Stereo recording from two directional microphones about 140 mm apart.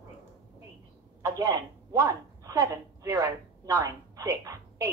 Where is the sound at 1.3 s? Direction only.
30° right (ahead or behind).